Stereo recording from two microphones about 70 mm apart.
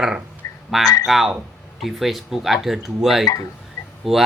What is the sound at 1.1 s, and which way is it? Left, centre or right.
Speech, centre.